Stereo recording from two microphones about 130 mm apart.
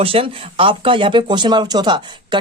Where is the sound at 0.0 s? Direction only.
45° right (ahead or behind).